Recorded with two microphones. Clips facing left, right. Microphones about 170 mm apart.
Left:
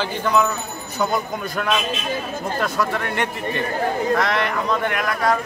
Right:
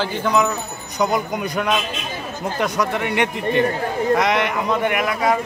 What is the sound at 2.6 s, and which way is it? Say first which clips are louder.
Speech: right 3 dB; 20° right (ahead or behind).